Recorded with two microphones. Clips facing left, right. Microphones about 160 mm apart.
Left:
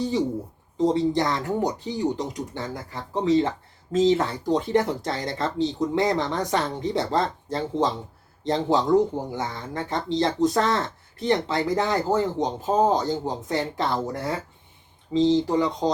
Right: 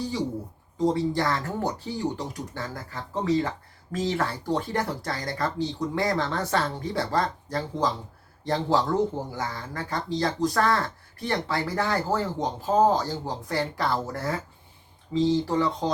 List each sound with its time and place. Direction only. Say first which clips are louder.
0.9 s speech: left 2 dB; 20° left (ahead or behind)